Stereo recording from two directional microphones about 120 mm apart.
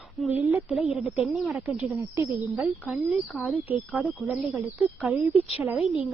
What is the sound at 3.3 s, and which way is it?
Speech, centre (ahead or behind).